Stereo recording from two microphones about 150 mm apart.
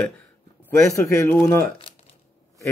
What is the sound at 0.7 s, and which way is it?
Speech, 20° left (ahead or behind).